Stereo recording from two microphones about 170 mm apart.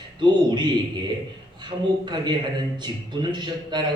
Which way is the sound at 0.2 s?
25° right (ahead or behind).